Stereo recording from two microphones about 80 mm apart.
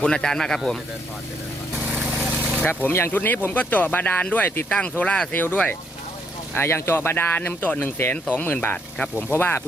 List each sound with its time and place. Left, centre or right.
0.0 s speech: centre
2.0 s vehicle: centre
2.3 s vehicle: right
2.6 s speech: left